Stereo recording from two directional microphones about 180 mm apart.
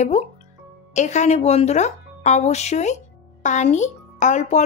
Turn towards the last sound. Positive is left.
turn(degrees=40)  # may be behind; listen again after turning